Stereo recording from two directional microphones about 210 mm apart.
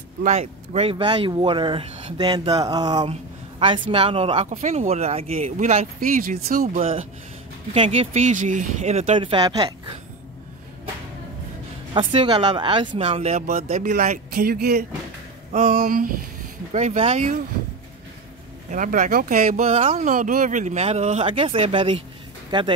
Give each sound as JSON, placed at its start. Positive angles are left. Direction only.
{"t": 0.2, "sound": "speech", "side_deg": -30}
{"t": 6.8, "sound": "speech", "side_deg": -30}
{"t": 11.9, "sound": "speech", "side_deg": -25}
{"t": 18.7, "sound": "speech", "side_deg": -40}